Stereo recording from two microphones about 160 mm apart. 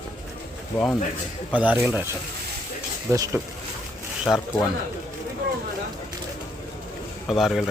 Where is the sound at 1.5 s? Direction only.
10° right (ahead or behind).